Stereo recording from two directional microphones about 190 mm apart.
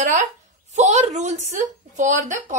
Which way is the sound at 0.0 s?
40° right (ahead or behind).